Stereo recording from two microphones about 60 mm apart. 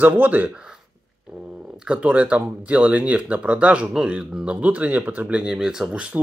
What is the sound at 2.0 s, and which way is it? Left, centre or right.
Speech, right.